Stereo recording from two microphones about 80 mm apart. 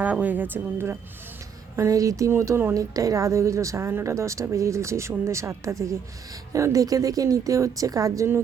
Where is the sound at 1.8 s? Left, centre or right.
Right.